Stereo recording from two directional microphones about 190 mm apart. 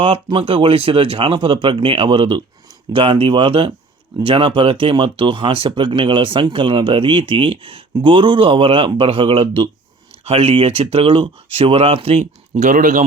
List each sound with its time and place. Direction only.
0.0 s speech: 30° right (ahead or behind)